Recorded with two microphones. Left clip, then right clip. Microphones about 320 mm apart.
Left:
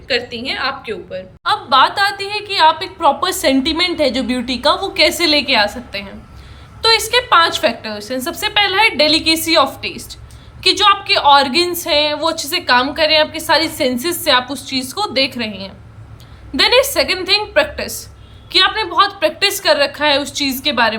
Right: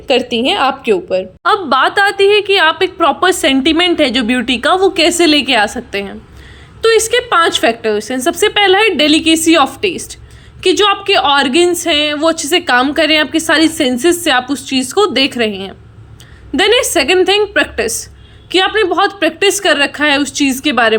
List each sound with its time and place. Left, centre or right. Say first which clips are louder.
0.1 s a woman's voice: right 7 dB; centre